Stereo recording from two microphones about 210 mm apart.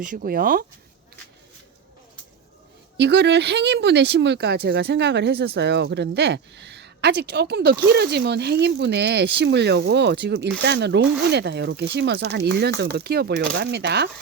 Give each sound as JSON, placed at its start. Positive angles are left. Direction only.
{"t": 0.0, "sound": "speech", "side_deg": -40}
{"t": 3.0, "sound": "speech", "side_deg": -55}